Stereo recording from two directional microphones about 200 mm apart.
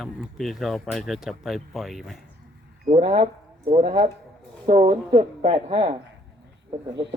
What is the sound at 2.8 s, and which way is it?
A woman's voice, 30° right (ahead or behind).